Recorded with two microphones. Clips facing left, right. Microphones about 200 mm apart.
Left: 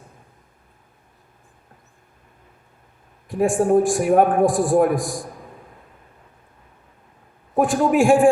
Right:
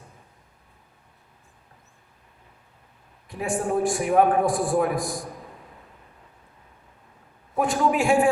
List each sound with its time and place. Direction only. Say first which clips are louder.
3.2 s a man's voice: left 8 dB; 50° left (ahead or behind)
7.5 s a man's voice: left 5 dB; 50° left (ahead or behind)